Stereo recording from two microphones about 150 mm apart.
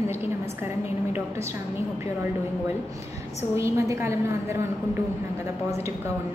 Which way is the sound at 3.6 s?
20° right (ahead or behind).